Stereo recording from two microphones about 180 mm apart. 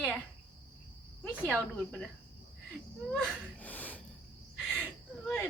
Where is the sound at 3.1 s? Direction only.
5° left (ahead or behind).